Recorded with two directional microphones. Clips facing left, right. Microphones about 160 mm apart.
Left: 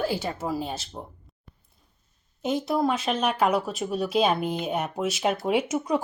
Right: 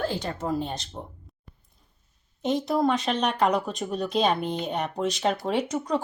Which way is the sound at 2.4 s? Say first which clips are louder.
Right 1 dB; 5° left (ahead or behind).